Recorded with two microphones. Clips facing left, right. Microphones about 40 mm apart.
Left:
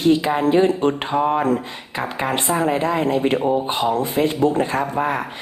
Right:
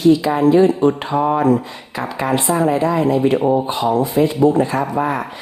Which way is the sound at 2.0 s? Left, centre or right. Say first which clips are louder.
Right 3 dB; left.